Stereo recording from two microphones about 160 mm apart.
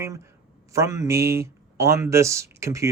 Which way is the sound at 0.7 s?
20° right (ahead or behind).